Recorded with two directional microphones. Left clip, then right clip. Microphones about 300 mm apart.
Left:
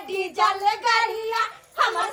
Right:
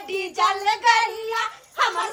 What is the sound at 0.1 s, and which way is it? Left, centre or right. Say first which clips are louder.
A child's voice: even; centre.